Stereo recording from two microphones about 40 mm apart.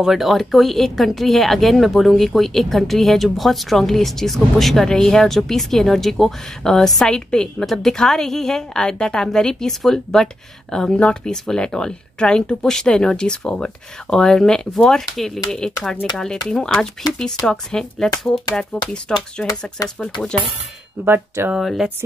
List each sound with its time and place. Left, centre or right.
0.0 s speech: centre
7.6 s speech: centre
21.0 s speech: right
21.5 s speech: centre